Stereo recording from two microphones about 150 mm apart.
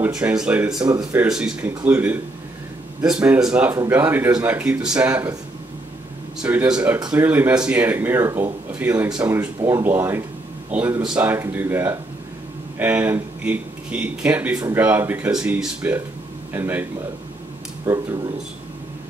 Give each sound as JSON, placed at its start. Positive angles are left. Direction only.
{"t": 0.0, "sound": "speech", "side_deg": -5}
{"t": 0.7, "sound": "speech", "side_deg": -30}
{"t": 1.3, "sound": "speech", "side_deg": -5}
{"t": 3.7, "sound": "speech", "side_deg": -15}
{"t": 6.4, "sound": "speech", "side_deg": -10}
{"t": 9.6, "sound": "speech", "side_deg": -20}
{"t": 17.8, "sound": "speech", "side_deg": -25}